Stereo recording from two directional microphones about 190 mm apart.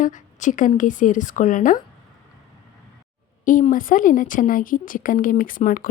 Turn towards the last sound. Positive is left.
turn(degrees=45)  # may be behind; listen again after turning